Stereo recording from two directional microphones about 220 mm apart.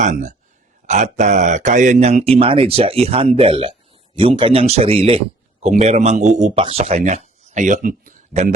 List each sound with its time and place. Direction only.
0.0 s speech: 35° right (ahead or behind)